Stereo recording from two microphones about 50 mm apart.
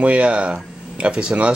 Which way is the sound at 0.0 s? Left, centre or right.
Right.